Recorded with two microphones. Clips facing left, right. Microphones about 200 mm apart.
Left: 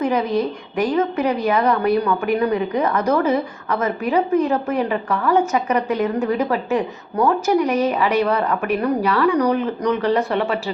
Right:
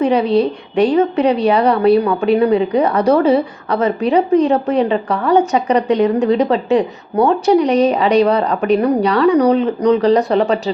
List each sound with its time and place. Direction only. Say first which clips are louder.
0.0 s a woman's voice: right 6 dB; 30° right (ahead or behind)